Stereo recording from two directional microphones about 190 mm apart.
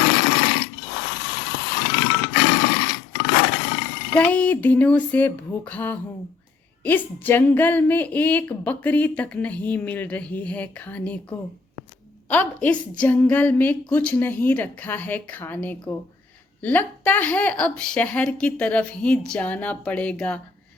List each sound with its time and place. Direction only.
0.0 s mechanisms: 65° left (ahead or behind)
4.1 s a woman's voice: 10° left (ahead or behind)